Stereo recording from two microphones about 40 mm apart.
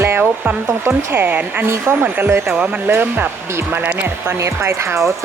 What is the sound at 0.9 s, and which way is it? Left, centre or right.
Speech, right.